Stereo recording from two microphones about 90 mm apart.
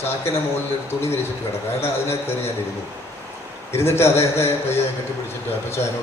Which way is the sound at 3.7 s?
30° left (ahead or behind).